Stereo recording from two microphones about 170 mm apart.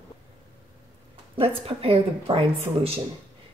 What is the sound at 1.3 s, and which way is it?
A woman's voice, 35° right (ahead or behind).